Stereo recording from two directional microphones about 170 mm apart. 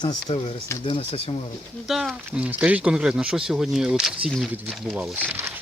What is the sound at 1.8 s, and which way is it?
Speech, centre (ahead or behind).